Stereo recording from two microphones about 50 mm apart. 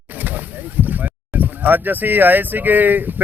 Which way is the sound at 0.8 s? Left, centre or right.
Right.